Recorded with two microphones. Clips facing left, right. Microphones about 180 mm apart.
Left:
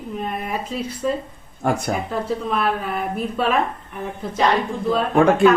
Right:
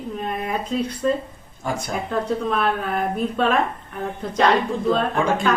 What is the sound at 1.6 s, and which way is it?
Speech, 60° left (ahead or behind).